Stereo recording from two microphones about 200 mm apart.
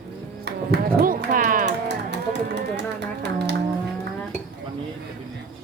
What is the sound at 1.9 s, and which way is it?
Music, 60° right (ahead or behind).